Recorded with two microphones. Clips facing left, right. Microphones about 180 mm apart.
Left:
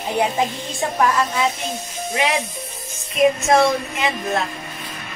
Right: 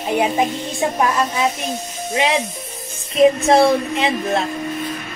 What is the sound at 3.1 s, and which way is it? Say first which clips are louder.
Music: right 3 dB; 35° right (ahead or behind).